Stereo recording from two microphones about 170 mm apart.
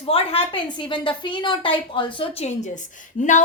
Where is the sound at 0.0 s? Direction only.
35° left (ahead or behind).